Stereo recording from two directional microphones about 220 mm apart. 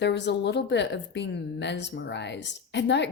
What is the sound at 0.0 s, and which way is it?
A woman's voice, 50° left (ahead or behind).